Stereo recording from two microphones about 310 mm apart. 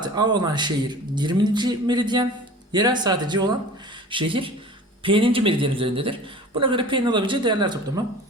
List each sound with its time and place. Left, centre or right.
0.0 s speech: centre